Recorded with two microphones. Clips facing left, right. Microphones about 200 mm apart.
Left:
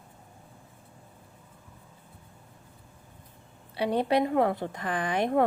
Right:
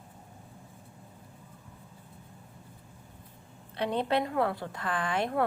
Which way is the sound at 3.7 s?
10° left (ahead or behind).